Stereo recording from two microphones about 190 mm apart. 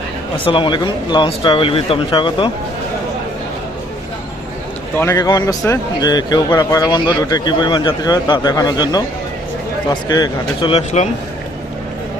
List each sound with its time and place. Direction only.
0.3 s speech: 25° left (ahead or behind)
4.9 s speech: 15° left (ahead or behind); by 11.1 s 35° left (ahead or behind)